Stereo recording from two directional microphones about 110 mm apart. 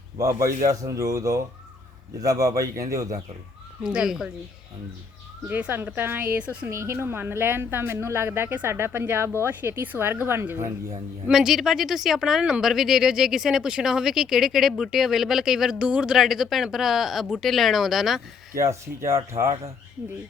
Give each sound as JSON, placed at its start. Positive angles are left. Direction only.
{"t": 0.2, "sound": "a woman's voice", "side_deg": -30}
{"t": 3.8, "sound": "speech", "side_deg": -5}
{"t": 5.5, "sound": "speech", "side_deg": -15}
{"t": 6.7, "sound": "a woman's voice", "side_deg": -25}
{"t": 11.3, "sound": "speech", "side_deg": -5}
{"t": 18.5, "sound": "a woman's voice", "side_deg": -25}